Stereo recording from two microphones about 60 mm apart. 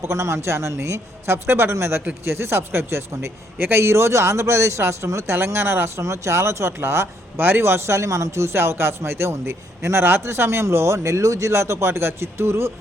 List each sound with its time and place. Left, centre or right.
0.0 s speech: right
6.0 s speech: right